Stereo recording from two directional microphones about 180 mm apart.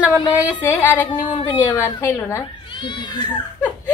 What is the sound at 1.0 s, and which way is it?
Speech, 25° left (ahead or behind).